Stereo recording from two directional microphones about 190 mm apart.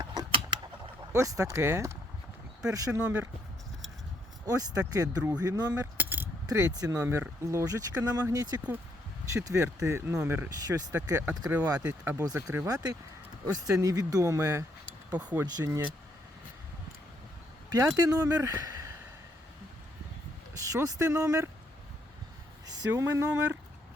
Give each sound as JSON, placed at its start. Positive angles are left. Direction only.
{"t": 0.0, "sound": "a sound", "side_deg": -25}
{"t": 1.1, "sound": "speech", "side_deg": -15}
{"t": 4.4, "sound": "speech", "side_deg": -20}
{"t": 6.0, "sound": "keys jangling", "side_deg": -10}
{"t": 7.0, "sound": "speech", "side_deg": -15}
{"t": 15.4, "sound": "speech", "side_deg": -20}
{"t": 17.7, "sound": "speech", "side_deg": -15}
{"t": 20.6, "sound": "speech", "side_deg": -15}
{"t": 22.6, "sound": "speech", "side_deg": -15}